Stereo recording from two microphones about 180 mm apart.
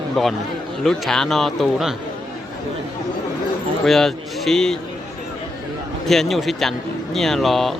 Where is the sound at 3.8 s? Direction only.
Centre (ahead or behind).